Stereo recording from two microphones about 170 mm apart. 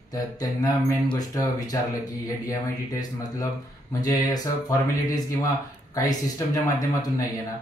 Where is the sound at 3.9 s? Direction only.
20° left (ahead or behind).